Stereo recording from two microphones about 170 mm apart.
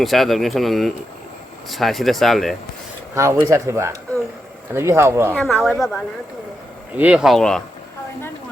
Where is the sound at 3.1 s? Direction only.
15° right (ahead or behind).